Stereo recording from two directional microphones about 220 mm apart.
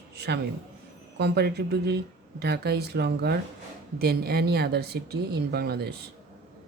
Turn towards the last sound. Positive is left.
turn(degrees=-45)  # may be behind; listen again after turning